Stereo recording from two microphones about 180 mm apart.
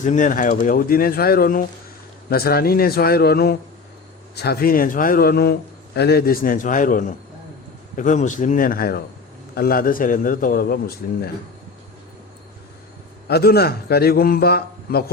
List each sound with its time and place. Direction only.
0.0 s a man's voice: 45° left (ahead or behind)
13.2 s a man's voice: 60° left (ahead or behind)